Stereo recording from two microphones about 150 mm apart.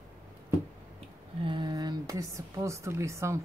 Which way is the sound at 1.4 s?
30° right (ahead or behind).